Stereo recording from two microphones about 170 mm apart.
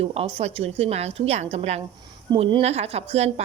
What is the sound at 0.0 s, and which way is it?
A woman's voice, 35° right (ahead or behind).